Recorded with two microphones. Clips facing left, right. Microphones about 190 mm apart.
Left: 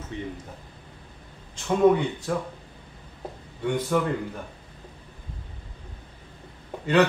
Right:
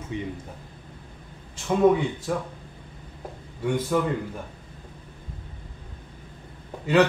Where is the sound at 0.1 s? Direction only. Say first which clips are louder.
Right 2 dB; 15° right (ahead or behind).